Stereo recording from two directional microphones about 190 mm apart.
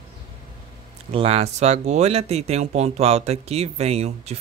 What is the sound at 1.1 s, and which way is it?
Speech, 30° right (ahead or behind).